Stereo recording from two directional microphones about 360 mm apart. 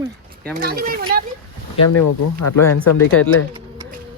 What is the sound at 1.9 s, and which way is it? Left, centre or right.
Speech, left.